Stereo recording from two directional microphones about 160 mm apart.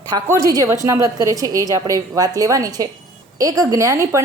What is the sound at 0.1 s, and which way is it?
A woman's voice, 20° right (ahead or behind).